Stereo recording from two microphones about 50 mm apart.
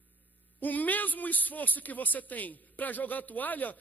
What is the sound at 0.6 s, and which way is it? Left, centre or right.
A man's voice, left.